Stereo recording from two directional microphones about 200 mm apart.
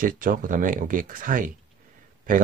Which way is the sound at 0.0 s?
45° right (ahead or behind).